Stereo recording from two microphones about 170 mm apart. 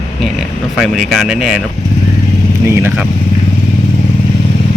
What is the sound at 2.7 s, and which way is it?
Speech, 15° right (ahead or behind).